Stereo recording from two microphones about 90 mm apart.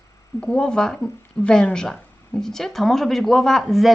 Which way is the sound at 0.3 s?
10° left (ahead or behind).